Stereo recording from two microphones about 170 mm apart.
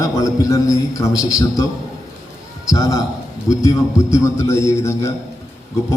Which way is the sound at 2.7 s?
20° left (ahead or behind).